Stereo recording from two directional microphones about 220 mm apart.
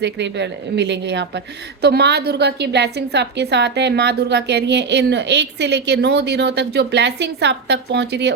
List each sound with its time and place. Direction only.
0.0 s a woman's voice: 50° right (ahead or behind)